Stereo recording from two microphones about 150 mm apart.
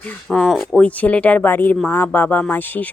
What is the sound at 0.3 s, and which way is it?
Speech, centre (ahead or behind).